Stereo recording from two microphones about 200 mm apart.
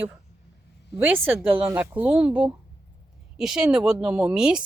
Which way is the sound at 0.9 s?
10° right (ahead or behind).